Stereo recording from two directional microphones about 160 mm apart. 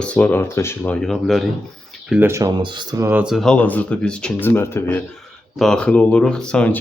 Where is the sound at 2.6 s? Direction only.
30° right (ahead or behind).